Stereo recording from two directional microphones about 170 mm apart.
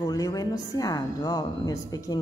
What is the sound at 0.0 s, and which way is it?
A woman's voice, 20° left (ahead or behind).